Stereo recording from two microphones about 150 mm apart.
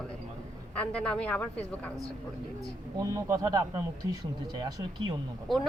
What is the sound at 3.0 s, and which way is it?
Speech, 20° right (ahead or behind).